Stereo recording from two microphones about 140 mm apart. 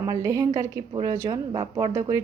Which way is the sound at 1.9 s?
20° right (ahead or behind).